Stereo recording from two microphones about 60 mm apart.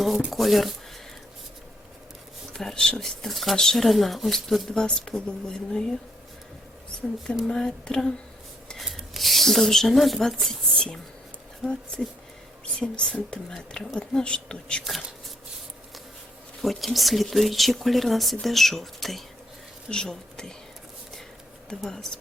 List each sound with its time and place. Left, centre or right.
0.3 s speech: centre
2.5 s speech: centre
7.4 s speech: centre
16.6 s speech: centre
21.8 s speech: centre